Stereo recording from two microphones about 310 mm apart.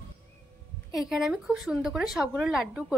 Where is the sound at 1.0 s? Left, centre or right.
Centre.